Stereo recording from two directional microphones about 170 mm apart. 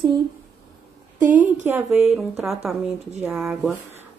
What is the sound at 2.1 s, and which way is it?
Speech, centre (ahead or behind).